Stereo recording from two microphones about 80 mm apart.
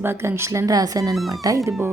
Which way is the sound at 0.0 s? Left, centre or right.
Right.